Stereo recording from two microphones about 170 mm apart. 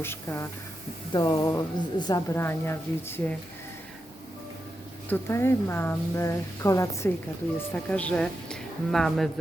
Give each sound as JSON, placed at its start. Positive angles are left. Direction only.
{"t": 0.0, "sound": "speech", "side_deg": 15}
{"t": 1.1, "sound": "a woman's voice", "side_deg": 25}
{"t": 5.0, "sound": "a woman's voice", "side_deg": 10}